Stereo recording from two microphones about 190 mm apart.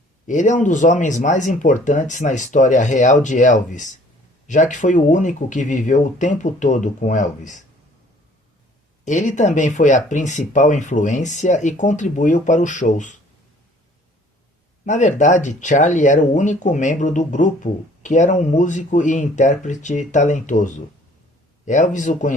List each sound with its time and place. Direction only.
0.3 s speech: 40° left (ahead or behind)
9.0 s speech: 40° left (ahead or behind)
14.8 s speech: 40° left (ahead or behind)